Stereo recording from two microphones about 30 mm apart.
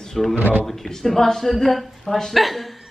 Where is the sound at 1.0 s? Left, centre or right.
Centre.